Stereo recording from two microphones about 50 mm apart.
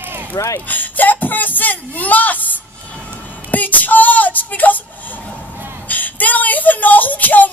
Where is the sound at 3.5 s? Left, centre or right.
Left.